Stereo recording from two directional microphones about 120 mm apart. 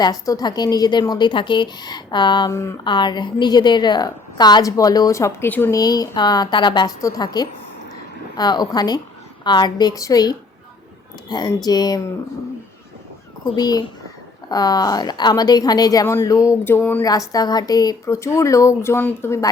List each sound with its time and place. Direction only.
0.0 s a woman's voice: 30° left (ahead or behind)
5.7 s a woman's voice: 30° left (ahead or behind)
13.6 s a woman's voice: 35° left (ahead or behind); by 17.0 s 15° left (ahead or behind)
17.0 s a woman's voice: 30° left (ahead or behind)